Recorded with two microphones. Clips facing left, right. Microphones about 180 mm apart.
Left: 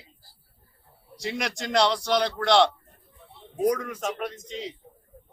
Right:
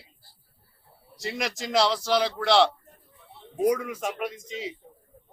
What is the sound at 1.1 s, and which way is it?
Speech, centre (ahead or behind).